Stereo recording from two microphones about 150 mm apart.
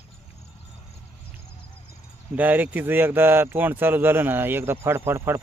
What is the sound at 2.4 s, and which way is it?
Speech, 10° right (ahead or behind).